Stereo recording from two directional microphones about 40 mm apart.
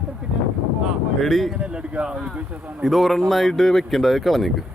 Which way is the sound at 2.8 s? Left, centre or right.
Centre.